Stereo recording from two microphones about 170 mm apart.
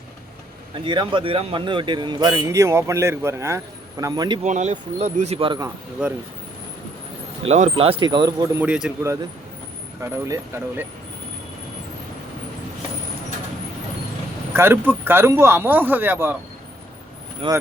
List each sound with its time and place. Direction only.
0.9 s speech: 30° right (ahead or behind)
4.4 s speech: 45° right (ahead or behind)
6.0 s a man's voice: 5° right (ahead or behind)
7.4 s speech: 40° right (ahead or behind)
8.5 s a man's voice: 5° right (ahead or behind)
14.5 s a man's voice: 15° right (ahead or behind)
17.4 s speech: 35° right (ahead or behind)